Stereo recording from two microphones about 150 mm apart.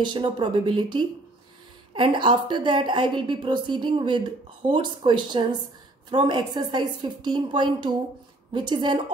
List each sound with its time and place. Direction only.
0.0 s a woman's voice: 30° right (ahead or behind)